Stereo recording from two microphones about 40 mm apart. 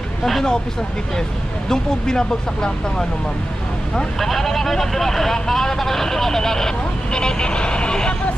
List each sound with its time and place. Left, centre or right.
0.2 s speech: centre
1.7 s speech: centre
4.2 s speech: centre; by 8.1 s left